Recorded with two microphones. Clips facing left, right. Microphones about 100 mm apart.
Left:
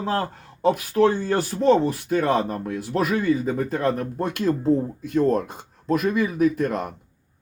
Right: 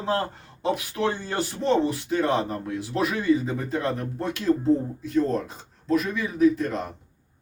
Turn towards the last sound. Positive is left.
turn(degrees=55)  # may be behind; listen again after turning